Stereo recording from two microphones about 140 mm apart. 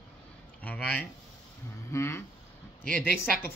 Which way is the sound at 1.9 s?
20° left (ahead or behind).